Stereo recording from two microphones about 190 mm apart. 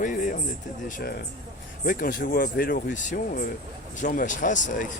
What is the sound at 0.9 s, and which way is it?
Speech, 45° left (ahead or behind).